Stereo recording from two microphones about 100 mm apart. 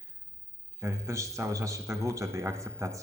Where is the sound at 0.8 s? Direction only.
30° right (ahead or behind).